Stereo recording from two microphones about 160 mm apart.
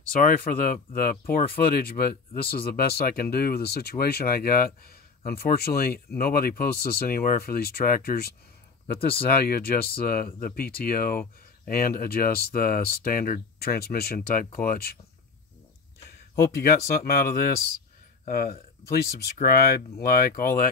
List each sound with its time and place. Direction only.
0.1 s speech: 60° left (ahead or behind)
16.5 s speech: 70° left (ahead or behind)